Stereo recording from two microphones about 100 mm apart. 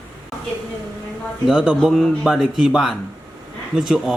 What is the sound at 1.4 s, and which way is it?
Speech, 10° right (ahead or behind).